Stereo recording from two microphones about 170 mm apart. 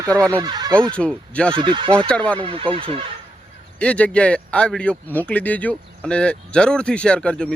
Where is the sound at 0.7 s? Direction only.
5° left (ahead or behind).